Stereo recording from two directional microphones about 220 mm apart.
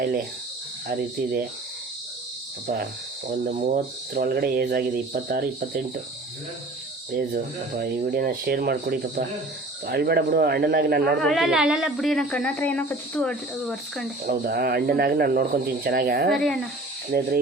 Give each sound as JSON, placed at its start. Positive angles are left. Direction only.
{"t": 0.9, "sound": "speech", "side_deg": -40}
{"t": 3.2, "sound": "speech", "side_deg": -35}
{"t": 7.1, "sound": "speech", "side_deg": -40}
{"t": 11.2, "sound": "speech", "side_deg": 0}
{"t": 14.3, "sound": "speech", "side_deg": -45}
{"t": 16.3, "sound": "speech", "side_deg": 0}
{"t": 17.1, "sound": "speech", "side_deg": -40}